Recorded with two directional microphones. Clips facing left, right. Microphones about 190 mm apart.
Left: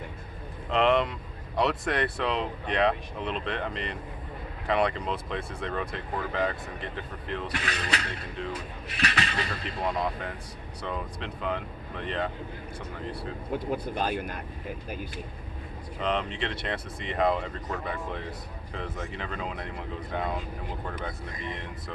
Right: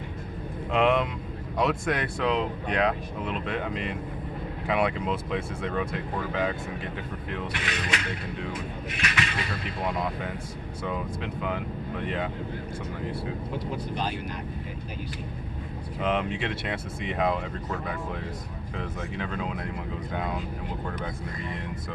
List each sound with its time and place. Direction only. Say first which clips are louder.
0.7 s speech: even; centre (ahead or behind)
7.5 s speech: right 1 dB; 35° left (ahead or behind)
10.0 s speech: right 1 dB; 5° right (ahead or behind)
13.9 s speech: left 1 dB; 50° left (ahead or behind)
16.0 s speech: right 2 dB; 10° right (ahead or behind)